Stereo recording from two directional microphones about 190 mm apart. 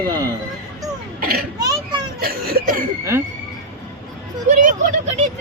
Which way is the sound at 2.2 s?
50° right (ahead or behind).